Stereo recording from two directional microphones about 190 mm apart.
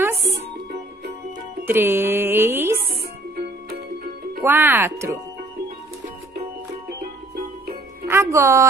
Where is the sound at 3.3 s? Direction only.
55° right (ahead or behind).